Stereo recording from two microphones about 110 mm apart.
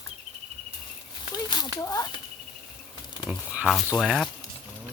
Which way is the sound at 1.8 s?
35° left (ahead or behind).